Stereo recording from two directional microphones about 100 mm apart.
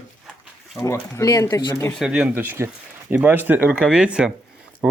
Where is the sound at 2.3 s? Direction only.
20° right (ahead or behind).